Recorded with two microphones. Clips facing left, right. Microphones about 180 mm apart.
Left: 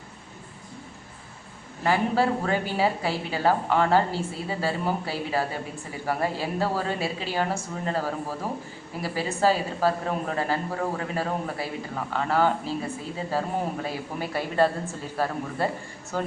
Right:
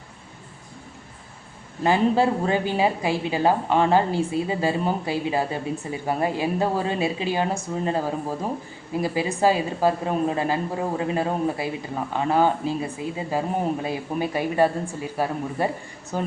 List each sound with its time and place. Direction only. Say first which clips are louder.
1.8 s a woman's voice: right 4 dB; 20° right (ahead or behind)